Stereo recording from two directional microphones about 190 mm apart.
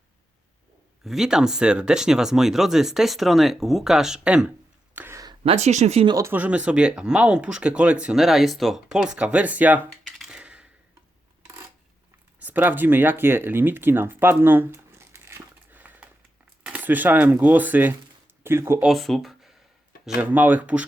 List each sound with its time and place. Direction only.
1.0 s speech: centre (ahead or behind); by 6.1 s 30° right (ahead or behind)
6.1 s speech: 10° right (ahead or behind)
12.4 s speech: 10° right (ahead or behind)
18.9 s speech: centre (ahead or behind)